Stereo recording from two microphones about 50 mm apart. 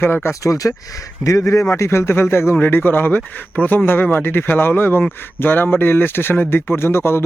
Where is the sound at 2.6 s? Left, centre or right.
Left.